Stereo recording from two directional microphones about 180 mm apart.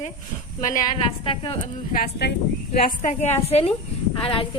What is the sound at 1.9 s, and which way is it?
Speech, 60° left (ahead or behind).